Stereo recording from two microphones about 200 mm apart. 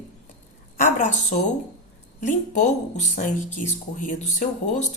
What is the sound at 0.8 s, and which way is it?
A woman's voice, 40° left (ahead or behind).